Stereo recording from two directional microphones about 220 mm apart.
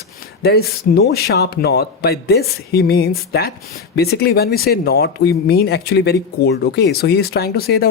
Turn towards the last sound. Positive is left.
turn(degrees=45)  # may be behind; listen again after turning